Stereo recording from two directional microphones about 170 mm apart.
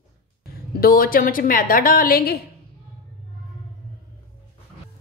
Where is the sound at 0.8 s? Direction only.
60° left (ahead or behind).